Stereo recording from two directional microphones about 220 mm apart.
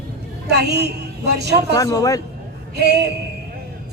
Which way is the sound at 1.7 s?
15° left (ahead or behind).